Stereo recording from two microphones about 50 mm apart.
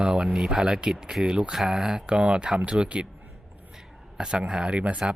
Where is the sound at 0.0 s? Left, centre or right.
Centre.